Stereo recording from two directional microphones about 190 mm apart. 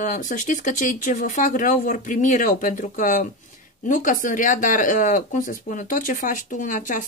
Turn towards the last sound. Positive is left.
turn(degrees=45)  # may be behind; listen again after turning